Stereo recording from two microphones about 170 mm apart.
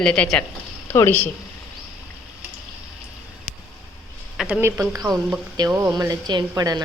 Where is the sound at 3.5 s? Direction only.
45° left (ahead or behind).